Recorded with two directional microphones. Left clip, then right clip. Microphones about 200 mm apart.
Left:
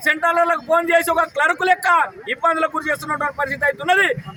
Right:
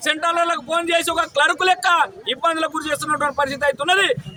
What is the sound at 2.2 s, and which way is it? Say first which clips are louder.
Speech: left 1 dB; 25° right (ahead or behind).